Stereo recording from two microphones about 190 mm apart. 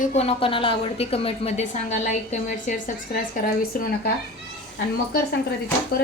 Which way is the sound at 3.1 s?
50° left (ahead or behind).